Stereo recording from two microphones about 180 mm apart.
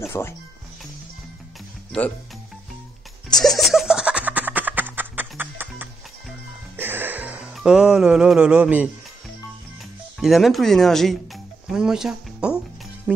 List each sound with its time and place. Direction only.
0.0 s speech: 15° left (ahead or behind)
1.9 s speech: 5° left (ahead or behind)
3.3 s music: centre (ahead or behind)
10.2 s speech: centre (ahead or behind)